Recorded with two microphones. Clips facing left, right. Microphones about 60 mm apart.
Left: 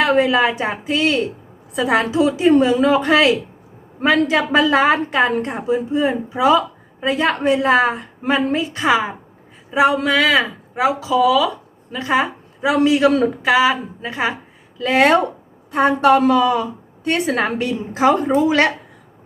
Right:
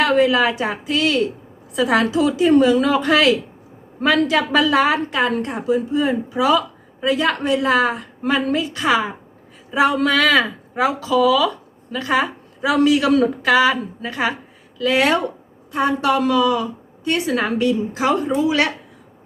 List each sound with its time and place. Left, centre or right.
0.0 s a woman's voice: left